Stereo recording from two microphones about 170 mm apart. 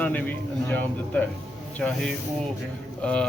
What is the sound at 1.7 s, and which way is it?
Speech, 5° left (ahead or behind).